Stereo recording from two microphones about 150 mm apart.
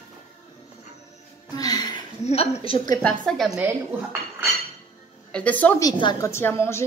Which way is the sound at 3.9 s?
10° right (ahead or behind).